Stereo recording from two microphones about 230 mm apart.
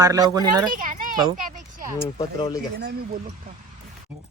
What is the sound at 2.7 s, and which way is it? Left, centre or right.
Speech, right.